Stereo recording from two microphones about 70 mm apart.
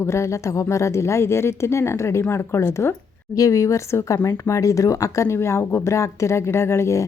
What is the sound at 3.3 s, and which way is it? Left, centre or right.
A woman's voice, left.